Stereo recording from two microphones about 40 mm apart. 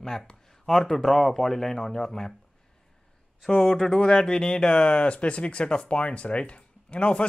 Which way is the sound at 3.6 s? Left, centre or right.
Centre.